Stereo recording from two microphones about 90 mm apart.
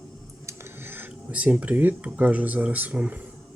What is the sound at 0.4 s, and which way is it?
Dishes, 25° right (ahead or behind).